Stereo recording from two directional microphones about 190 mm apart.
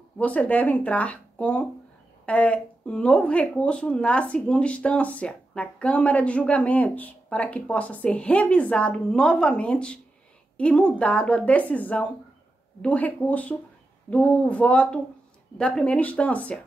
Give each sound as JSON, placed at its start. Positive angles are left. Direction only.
{"t": 0.2, "sound": "speech", "side_deg": 5}